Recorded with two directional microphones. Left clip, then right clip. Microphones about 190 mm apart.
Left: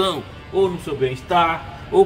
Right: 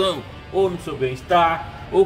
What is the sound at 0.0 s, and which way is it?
Speech, 15° left (ahead or behind).